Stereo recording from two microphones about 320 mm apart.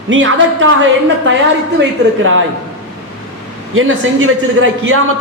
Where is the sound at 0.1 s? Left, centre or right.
Right.